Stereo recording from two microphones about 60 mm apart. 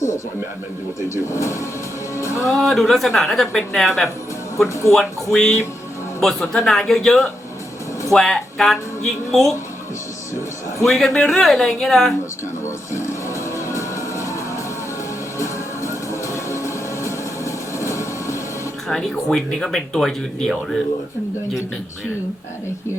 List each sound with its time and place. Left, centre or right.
1.1 s speech: left
2.5 s a woman's voice: centre
10.8 s a woman's voice: centre
12.9 s music: left
15.4 s music: left
18.9 s speech: centre